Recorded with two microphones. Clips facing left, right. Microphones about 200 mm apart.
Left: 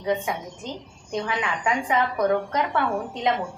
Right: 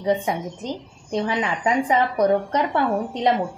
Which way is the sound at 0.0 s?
35° right (ahead or behind).